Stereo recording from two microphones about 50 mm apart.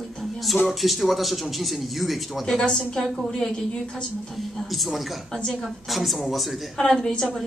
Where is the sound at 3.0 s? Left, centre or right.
Centre.